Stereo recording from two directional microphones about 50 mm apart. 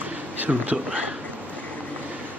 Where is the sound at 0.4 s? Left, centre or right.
Right.